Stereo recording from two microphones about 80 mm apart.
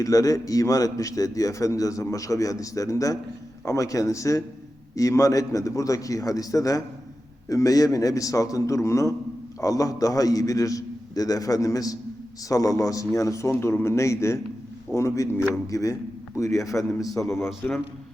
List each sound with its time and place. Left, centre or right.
0.0 s a man's voice: left
17.2 s speech: left